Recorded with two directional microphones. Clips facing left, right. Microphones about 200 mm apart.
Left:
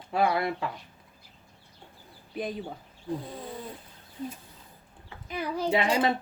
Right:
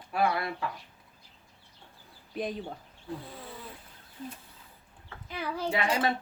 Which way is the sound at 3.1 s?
15° left (ahead or behind).